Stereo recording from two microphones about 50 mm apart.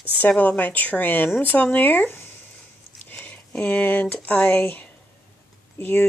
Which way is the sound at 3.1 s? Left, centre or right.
Left.